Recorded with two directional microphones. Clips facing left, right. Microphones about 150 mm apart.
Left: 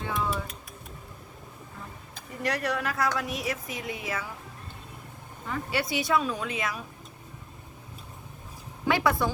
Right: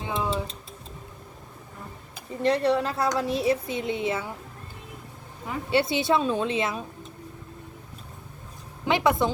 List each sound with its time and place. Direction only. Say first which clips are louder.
0.0 s a sound: right 2 dB; 20° right (ahead or behind)
2.4 s a woman's voice: right 7 dB; 30° right (ahead or behind)
5.7 s a woman's voice: right 5 dB; 25° right (ahead or behind)
8.9 s a woman's voice: right 3 dB; 20° right (ahead or behind)